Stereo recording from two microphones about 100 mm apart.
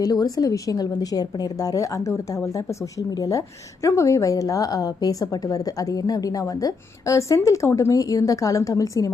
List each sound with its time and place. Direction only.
0.0 s a woman's voice: 40° left (ahead or behind)